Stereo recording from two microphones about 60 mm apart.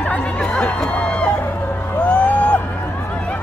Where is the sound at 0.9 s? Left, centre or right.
Left.